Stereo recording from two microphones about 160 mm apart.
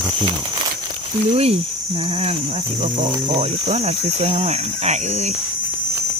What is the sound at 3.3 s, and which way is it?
Speech, 40° right (ahead or behind).